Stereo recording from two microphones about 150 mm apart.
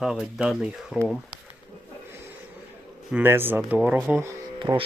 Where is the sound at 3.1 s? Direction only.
15° right (ahead or behind).